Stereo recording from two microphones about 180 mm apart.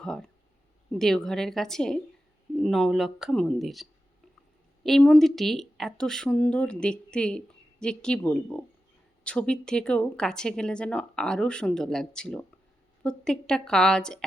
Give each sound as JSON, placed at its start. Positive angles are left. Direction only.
{"t": 0.0, "sound": "speech", "side_deg": 5}